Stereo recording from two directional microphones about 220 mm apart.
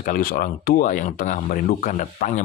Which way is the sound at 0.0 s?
40° left (ahead or behind).